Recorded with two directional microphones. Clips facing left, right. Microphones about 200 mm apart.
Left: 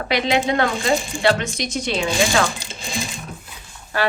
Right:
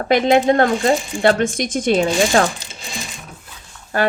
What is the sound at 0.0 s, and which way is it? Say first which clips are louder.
Speech: right 6 dB; 50° right (ahead or behind).